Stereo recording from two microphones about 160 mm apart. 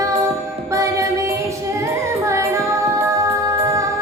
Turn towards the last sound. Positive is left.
turn(degrees=-20)  # may be behind; listen again after turning